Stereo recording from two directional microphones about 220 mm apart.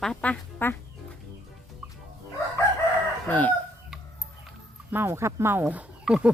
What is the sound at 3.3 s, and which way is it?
Chicken, 5° left (ahead or behind).